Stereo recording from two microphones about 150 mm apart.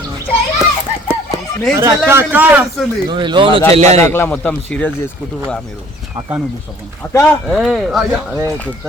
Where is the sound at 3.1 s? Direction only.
30° right (ahead or behind).